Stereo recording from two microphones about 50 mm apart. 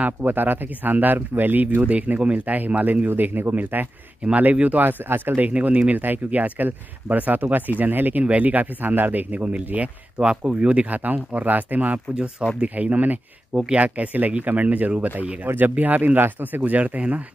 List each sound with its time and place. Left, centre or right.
0.0 s speech: right
1.8 s speech: right
3.1 s speech: right
4.3 s speech: right
5.5 s speech: right
15.4 s speech: right
16.7 s speech: right